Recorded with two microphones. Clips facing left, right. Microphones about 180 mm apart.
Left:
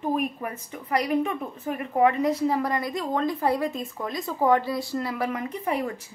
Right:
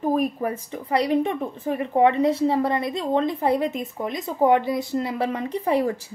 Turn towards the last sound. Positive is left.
turn(degrees=-30)  # may be behind; listen again after turning